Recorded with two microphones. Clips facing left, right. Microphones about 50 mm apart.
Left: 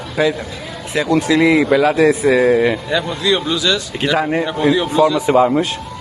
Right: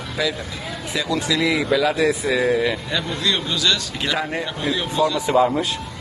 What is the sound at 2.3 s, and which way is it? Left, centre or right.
Speech, left.